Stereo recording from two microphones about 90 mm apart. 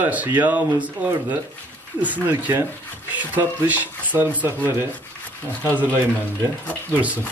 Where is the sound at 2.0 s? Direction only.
20° right (ahead or behind).